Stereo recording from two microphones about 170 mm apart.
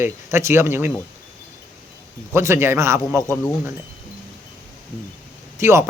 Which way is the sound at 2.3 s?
15° right (ahead or behind).